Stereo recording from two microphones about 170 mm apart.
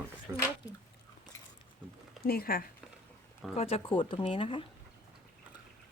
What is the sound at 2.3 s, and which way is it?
Speech, 60° left (ahead or behind).